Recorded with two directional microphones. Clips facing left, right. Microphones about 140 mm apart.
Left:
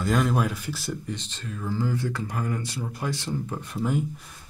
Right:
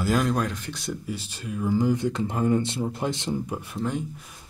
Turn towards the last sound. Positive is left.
turn(degrees=5)  # may be behind; listen again after turning